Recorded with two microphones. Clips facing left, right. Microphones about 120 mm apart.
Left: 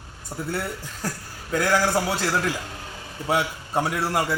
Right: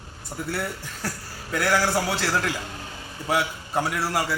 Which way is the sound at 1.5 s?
20° left (ahead or behind).